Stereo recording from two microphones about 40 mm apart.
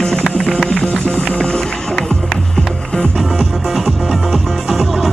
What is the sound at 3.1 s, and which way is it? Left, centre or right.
Music, centre.